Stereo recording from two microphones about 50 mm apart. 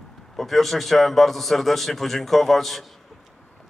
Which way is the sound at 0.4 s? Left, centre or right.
Centre.